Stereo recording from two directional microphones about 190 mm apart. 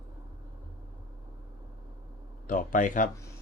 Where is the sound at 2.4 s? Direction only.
45° left (ahead or behind).